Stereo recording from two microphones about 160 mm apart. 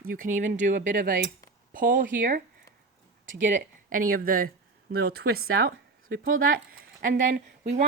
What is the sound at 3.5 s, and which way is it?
Speech, 55° right (ahead or behind).